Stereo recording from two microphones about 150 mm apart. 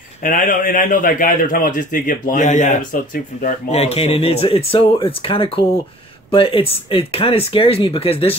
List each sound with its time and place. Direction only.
0.2 s a man's voice: 65° left (ahead or behind)
3.7 s speech: 40° left (ahead or behind)